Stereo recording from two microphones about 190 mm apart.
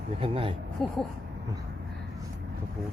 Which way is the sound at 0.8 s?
5° left (ahead or behind).